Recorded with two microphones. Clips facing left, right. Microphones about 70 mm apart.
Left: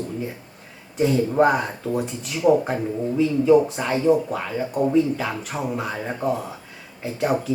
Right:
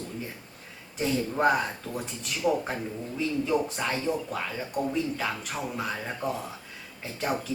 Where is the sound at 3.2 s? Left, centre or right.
Centre.